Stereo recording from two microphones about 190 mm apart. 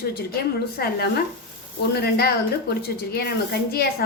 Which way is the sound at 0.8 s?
55° left (ahead or behind).